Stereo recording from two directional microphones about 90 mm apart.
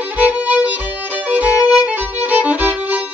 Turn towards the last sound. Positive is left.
turn(degrees=-15)  # may be behind; listen again after turning